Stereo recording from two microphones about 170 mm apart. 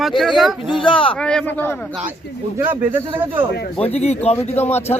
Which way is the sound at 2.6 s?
10° right (ahead or behind).